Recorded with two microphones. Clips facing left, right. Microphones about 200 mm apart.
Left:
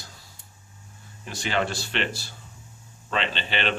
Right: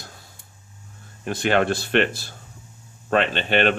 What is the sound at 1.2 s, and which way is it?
Speech, 55° right (ahead or behind).